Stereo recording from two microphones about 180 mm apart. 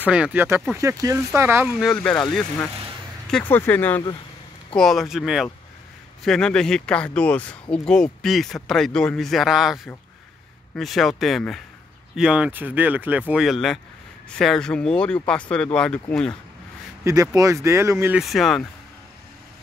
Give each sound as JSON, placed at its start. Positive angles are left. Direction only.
{"t": 0.0, "sound": "speech", "side_deg": -5}
{"t": 1.9, "sound": "speech", "side_deg": 5}
{"t": 17.0, "sound": "speech", "side_deg": -20}
{"t": 18.2, "sound": "speech", "side_deg": 0}